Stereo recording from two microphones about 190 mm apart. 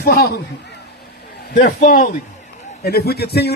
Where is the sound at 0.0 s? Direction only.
55° left (ahead or behind).